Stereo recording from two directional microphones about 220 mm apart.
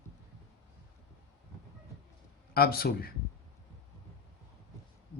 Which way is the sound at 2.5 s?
45° left (ahead or behind).